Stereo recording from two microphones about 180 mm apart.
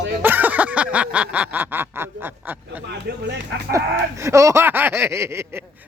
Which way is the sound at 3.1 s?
70° right (ahead or behind).